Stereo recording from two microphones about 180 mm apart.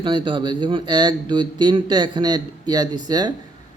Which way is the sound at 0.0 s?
25° right (ahead or behind).